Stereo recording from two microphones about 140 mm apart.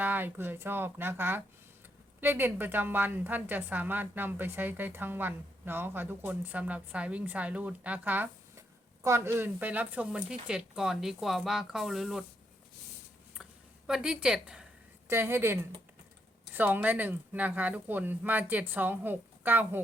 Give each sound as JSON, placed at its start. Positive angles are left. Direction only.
{"t": 0.0, "sound": "a woman's voice", "side_deg": -15}
{"t": 13.3, "sound": "a sound", "side_deg": -5}
{"t": 15.0, "sound": "a woman's voice", "side_deg": -15}
{"t": 16.6, "sound": "a woman's voice", "side_deg": -10}